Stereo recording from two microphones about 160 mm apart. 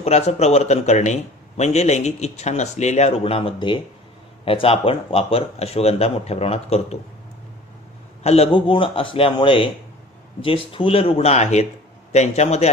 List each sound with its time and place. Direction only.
0.0 s speech: 40° left (ahead or behind)
8.2 s speech: 40° left (ahead or behind)